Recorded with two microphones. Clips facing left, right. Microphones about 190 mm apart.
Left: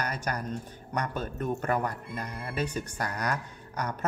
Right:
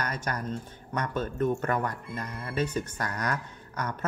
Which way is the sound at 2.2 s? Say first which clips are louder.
Left 1 dB; 35° left (ahead or behind).